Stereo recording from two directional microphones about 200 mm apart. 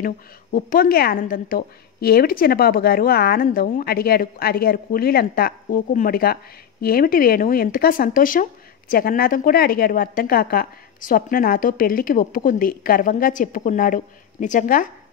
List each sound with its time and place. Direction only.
0.0 s a woman's voice: 45° left (ahead or behind)